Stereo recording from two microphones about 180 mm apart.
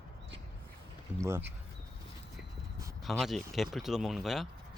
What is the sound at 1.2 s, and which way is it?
Speech, 15° right (ahead or behind).